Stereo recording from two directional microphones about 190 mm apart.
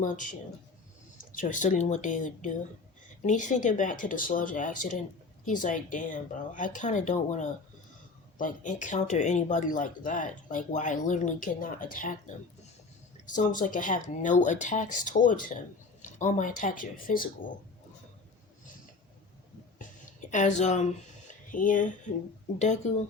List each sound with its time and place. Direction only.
0.0 s speech: 45° left (ahead or behind)
13.2 s speech: 45° left (ahead or behind)
20.3 s speech: 40° left (ahead or behind)
21.2 s a sound: 45° left (ahead or behind)
22.5 s speech: 40° left (ahead or behind)